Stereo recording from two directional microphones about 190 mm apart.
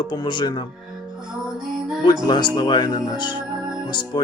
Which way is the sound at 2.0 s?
25° left (ahead or behind).